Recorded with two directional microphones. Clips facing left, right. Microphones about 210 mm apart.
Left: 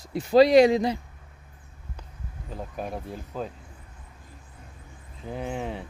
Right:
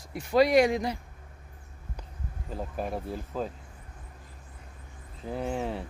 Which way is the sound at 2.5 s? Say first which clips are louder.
Right 1 dB; 5° right (ahead or behind).